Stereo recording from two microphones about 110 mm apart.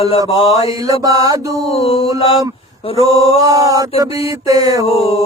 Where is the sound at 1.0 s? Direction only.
35° right (ahead or behind).